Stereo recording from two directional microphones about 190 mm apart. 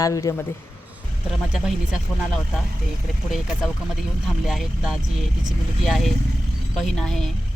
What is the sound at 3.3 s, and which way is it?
Speech, centre (ahead or behind).